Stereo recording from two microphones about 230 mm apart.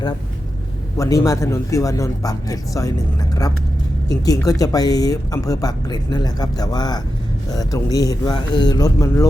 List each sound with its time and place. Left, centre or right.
0.9 s speech: centre
4.1 s speech: centre